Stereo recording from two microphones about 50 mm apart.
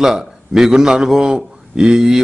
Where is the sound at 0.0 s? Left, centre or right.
Centre.